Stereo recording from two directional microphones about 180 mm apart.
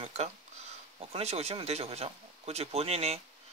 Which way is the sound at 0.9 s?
35° right (ahead or behind).